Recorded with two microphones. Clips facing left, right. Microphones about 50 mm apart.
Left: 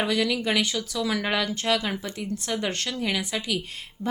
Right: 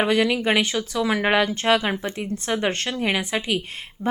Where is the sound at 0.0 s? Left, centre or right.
Right.